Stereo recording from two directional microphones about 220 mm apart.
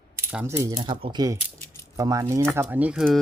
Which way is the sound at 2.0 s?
15° right (ahead or behind).